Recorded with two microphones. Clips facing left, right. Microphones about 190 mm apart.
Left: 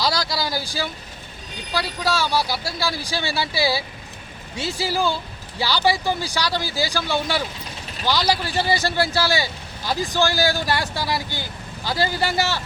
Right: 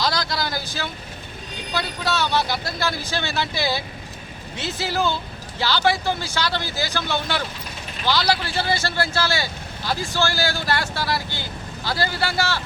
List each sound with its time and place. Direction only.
0.0 s vehicle: 10° left (ahead or behind)
1.7 s speech: 5° left (ahead or behind)